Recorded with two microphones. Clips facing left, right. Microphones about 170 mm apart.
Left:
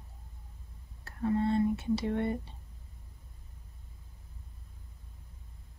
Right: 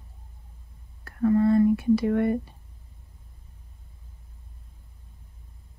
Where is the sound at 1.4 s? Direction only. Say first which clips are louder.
Right 8 dB; 25° left (ahead or behind).